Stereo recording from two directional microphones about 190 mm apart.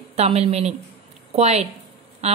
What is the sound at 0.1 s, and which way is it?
Speech, 35° right (ahead or behind).